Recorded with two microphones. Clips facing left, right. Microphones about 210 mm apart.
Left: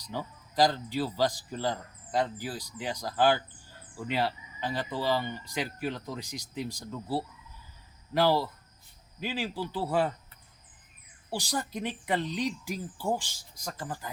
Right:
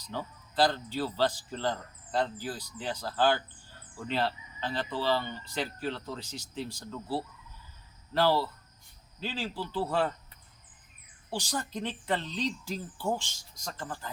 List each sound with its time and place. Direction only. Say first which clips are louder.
0.1 s speech: left 1 dB; 10° left (ahead or behind)
11.3 s speech: left 1 dB; 10° left (ahead or behind)